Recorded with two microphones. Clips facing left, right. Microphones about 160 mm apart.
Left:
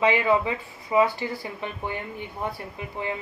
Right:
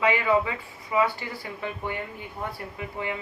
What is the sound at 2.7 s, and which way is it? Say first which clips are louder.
Speech: left 1 dB; 30° left (ahead or behind).